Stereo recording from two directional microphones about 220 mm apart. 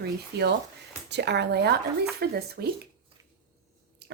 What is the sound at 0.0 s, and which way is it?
A woman's voice, 50° right (ahead or behind).